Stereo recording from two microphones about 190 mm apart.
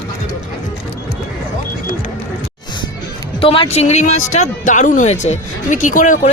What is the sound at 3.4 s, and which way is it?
Speech, 30° left (ahead or behind).